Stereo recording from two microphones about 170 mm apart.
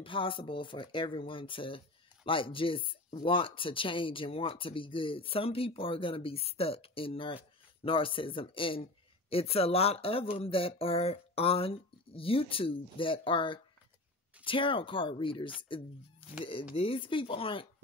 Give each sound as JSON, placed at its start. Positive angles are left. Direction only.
{"t": 0.0, "sound": "speech", "side_deg": 30}
{"t": 16.7, "sound": "speech", "side_deg": 35}